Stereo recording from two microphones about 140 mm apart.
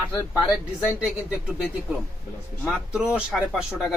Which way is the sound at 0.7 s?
10° right (ahead or behind).